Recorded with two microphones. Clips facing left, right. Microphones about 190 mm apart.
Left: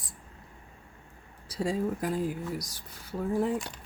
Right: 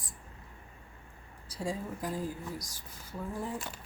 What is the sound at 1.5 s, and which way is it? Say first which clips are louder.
Speech: left 7 dB; 70° left (ahead or behind).